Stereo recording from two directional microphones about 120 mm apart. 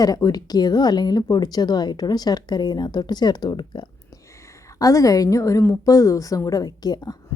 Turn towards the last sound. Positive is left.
turn(degrees=35)  # may be behind; listen again after turning